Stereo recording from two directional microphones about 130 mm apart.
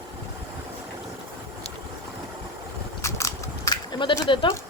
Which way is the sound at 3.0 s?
20° left (ahead or behind).